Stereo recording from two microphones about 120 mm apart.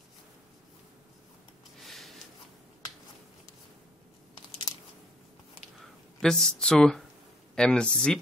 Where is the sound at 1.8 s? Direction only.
Centre (ahead or behind).